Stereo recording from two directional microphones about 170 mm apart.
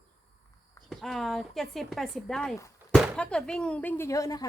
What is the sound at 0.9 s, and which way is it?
Speech, centre (ahead or behind).